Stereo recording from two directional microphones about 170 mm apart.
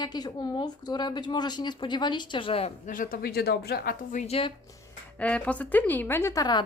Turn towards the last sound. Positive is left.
turn(degrees=25)  # may be behind; listen again after turning